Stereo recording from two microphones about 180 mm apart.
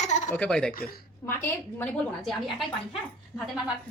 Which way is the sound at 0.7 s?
55° left (ahead or behind).